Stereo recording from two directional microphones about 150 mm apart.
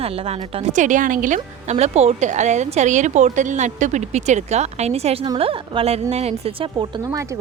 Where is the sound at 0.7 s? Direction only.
55° right (ahead or behind); by 7.4 s 20° right (ahead or behind).